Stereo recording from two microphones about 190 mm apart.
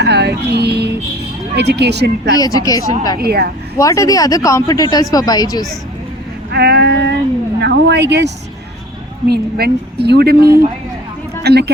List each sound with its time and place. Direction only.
0.0 s speech: 60° right (ahead or behind)
2.3 s speech: 20° left (ahead or behind)
3.2 s speech: 55° right (ahead or behind)
3.8 s speech: 15° left (ahead or behind)
6.5 s a sound: 60° right (ahead or behind)
7.6 s speech: 60° right (ahead or behind)